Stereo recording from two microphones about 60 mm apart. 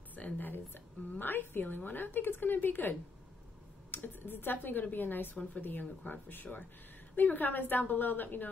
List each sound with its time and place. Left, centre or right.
0.1 s a woman's voice: left